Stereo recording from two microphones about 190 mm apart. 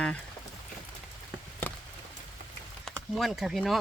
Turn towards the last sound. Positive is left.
turn(degrees=0)  # may be behind; listen again after turning